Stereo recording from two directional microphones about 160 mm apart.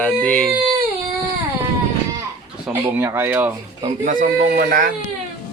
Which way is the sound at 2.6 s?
10° right (ahead or behind).